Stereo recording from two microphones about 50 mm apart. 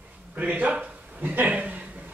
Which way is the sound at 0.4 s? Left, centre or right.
Right.